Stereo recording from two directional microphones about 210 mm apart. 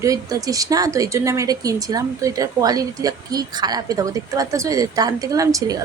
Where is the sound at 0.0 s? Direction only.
15° right (ahead or behind).